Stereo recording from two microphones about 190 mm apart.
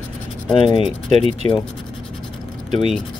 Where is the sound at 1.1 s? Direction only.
35° right (ahead or behind).